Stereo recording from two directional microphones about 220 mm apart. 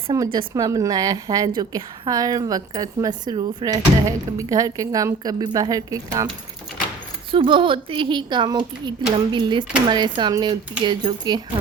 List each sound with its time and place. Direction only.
0.1 s a woman's voice: 20° right (ahead or behind)
7.3 s speech: 20° right (ahead or behind)